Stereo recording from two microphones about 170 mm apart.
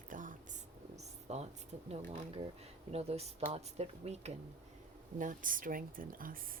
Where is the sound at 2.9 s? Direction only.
35° right (ahead or behind).